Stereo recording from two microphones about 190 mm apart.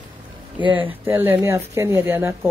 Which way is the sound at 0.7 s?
10° right (ahead or behind).